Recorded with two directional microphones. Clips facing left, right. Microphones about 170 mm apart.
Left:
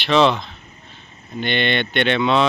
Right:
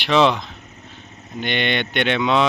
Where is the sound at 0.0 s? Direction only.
10° right (ahead or behind).